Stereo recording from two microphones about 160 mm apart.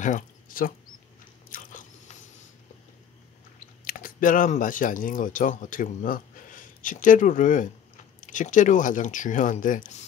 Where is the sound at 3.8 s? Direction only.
60° left (ahead or behind).